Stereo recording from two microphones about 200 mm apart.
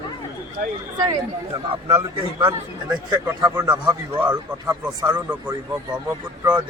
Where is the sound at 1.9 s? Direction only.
10° right (ahead or behind).